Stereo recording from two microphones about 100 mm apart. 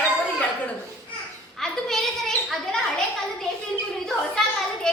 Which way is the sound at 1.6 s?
5° left (ahead or behind).